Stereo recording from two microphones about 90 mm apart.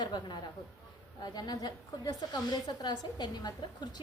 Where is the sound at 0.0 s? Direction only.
55° left (ahead or behind).